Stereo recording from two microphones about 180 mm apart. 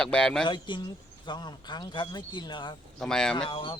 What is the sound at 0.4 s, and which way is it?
Speech, 25° left (ahead or behind).